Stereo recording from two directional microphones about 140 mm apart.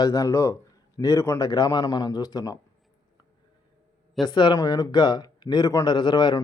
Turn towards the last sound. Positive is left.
turn(degrees=30)  # may be behind; listen again after turning